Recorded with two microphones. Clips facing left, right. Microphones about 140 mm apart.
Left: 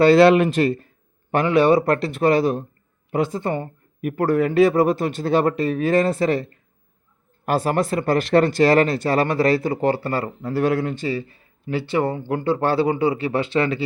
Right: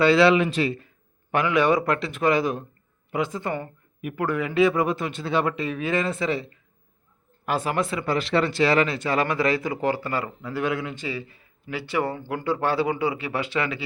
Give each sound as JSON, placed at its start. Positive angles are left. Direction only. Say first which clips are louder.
{"t": 0.0, "sound": "speech", "louder": "left 5 dB", "side_deg": 45}
{"t": 1.3, "sound": "speech", "louder": "left 5 dB", "side_deg": 35}